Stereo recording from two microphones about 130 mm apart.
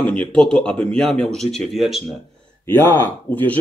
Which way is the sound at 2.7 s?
15° left (ahead or behind).